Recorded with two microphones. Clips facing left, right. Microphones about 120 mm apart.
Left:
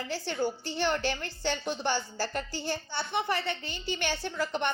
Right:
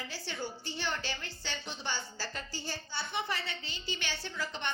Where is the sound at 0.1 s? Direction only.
55° left (ahead or behind).